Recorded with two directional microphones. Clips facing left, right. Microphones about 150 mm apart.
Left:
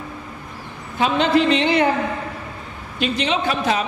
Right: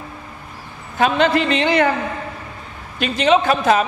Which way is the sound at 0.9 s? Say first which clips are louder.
Right 1 dB; 55° right (ahead or behind).